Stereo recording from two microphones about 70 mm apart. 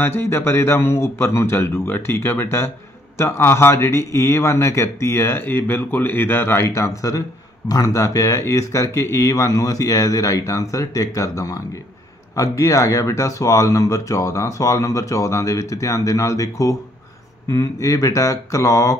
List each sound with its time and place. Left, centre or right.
0.0 s a man's voice: left
7.0 s speech: left